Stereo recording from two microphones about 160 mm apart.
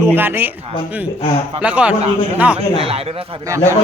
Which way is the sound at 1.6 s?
5° right (ahead or behind).